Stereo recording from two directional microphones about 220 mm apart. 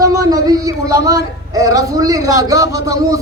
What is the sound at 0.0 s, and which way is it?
A man's voice, 15° right (ahead or behind).